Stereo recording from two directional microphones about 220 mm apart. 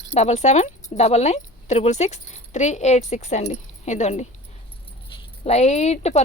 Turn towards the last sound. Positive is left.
turn(degrees=30)  # may be behind; listen again after turning